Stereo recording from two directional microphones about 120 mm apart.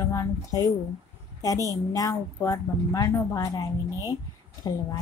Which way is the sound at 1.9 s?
30° left (ahead or behind).